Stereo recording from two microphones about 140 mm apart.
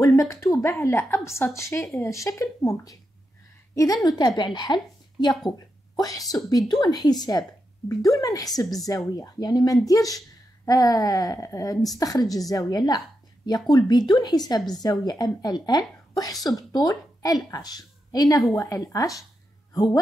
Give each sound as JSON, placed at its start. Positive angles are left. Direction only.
{"t": 0.0, "sound": "a woman's voice", "side_deg": 25}